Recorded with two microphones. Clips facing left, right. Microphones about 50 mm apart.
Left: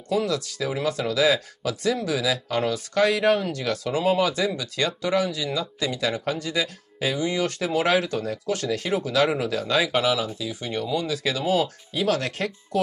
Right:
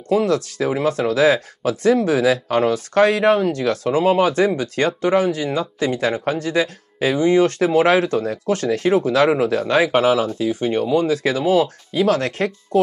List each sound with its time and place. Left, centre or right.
0.1 s speech: right